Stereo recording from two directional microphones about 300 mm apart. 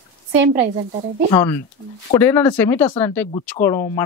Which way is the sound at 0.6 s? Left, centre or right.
Right.